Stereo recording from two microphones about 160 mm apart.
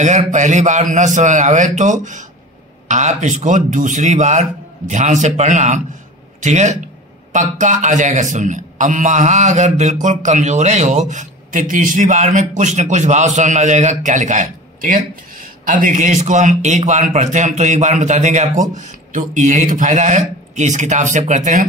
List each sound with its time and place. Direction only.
0.0 s a man's voice: 50° right (ahead or behind)